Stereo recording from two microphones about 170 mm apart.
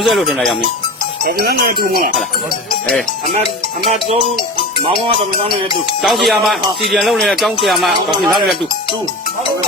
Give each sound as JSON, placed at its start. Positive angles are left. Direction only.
{"t": 0.0, "sound": "speech", "side_deg": 0}
{"t": 1.2, "sound": "speech", "side_deg": -70}
{"t": 6.0, "sound": "speech", "side_deg": 0}